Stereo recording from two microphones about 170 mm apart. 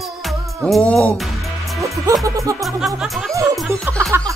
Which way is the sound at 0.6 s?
5° left (ahead or behind).